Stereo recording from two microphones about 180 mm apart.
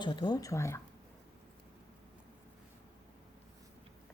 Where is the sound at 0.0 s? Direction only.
25° left (ahead or behind).